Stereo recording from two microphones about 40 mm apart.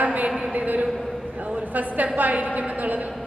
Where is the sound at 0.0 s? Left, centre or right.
Right.